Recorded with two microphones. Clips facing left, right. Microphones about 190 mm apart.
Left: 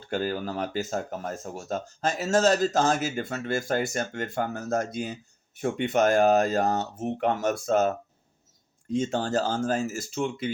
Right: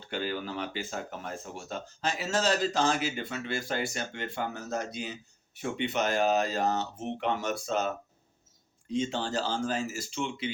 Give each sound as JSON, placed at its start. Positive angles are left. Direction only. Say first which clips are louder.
{"t": 0.1, "sound": "speech", "louder": "left 5 dB", "side_deg": 45}